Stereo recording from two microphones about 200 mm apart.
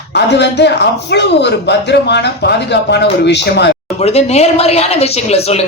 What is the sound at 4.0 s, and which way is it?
Speech, 30° left (ahead or behind).